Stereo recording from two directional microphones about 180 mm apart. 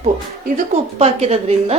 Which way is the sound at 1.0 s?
35° right (ahead or behind).